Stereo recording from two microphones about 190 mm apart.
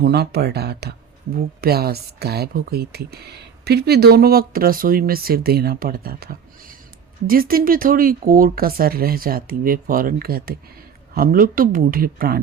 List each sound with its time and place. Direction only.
0.0 s speech: 60° right (ahead or behind)